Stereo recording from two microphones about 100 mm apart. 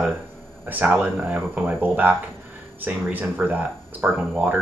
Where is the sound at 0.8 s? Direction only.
10° right (ahead or behind).